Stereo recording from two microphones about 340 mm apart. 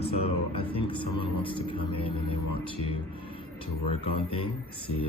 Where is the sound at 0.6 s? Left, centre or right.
Centre.